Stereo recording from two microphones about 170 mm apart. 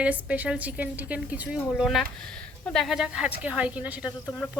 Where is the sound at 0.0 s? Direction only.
10° right (ahead or behind).